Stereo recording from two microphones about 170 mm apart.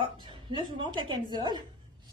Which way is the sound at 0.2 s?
25° right (ahead or behind).